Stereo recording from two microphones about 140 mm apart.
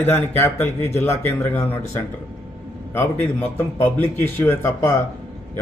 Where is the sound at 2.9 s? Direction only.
15° left (ahead or behind).